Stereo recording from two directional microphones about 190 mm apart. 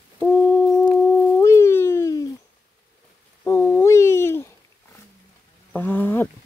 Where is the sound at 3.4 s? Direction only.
15° left (ahead or behind).